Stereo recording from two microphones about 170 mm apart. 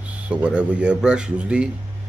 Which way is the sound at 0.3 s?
5° right (ahead or behind).